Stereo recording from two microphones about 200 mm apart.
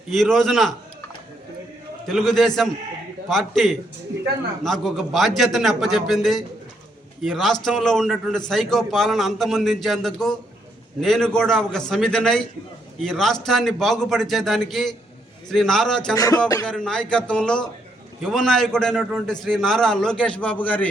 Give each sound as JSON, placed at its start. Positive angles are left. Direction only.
{"t": 0.1, "sound": "a man's voice", "side_deg": 0}
{"t": 2.0, "sound": "a man's voice", "side_deg": 0}
{"t": 16.1, "sound": "a sound", "side_deg": 20}
{"t": 16.6, "sound": "a man's voice", "side_deg": 5}